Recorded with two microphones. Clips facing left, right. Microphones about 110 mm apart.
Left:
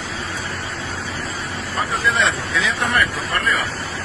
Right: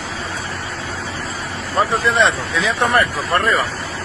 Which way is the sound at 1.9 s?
30° right (ahead or behind).